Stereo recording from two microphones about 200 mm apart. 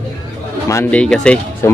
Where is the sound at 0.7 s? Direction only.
10° left (ahead or behind).